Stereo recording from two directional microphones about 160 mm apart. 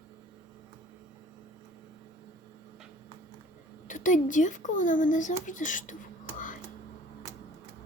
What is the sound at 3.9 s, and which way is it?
Speech, 55° left (ahead or behind).